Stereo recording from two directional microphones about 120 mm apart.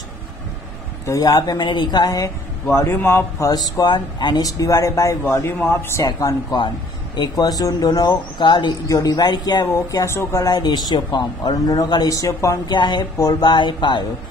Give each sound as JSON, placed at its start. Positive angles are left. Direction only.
{"t": 1.0, "sound": "speech", "side_deg": 30}
{"t": 12.6, "sound": "speech", "side_deg": 40}